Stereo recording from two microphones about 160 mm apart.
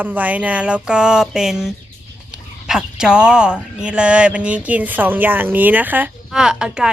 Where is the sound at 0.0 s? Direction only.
10° right (ahead or behind).